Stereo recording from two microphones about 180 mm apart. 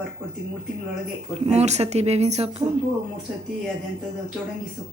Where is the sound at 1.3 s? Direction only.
35° right (ahead or behind).